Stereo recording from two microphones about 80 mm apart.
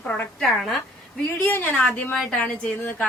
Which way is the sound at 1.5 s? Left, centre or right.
Left.